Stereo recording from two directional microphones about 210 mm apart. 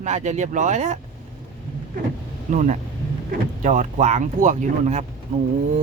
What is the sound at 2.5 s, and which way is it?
A man's voice, 40° right (ahead or behind).